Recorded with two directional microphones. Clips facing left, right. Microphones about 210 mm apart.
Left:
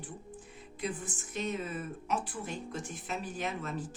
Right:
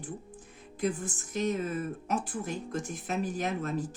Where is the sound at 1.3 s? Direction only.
40° right (ahead or behind).